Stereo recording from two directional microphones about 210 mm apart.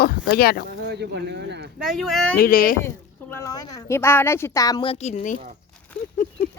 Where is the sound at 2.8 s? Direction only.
10° left (ahead or behind); by 5.4 s 35° left (ahead or behind).